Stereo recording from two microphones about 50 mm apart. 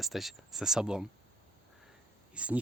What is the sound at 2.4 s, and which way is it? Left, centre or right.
Speech, right.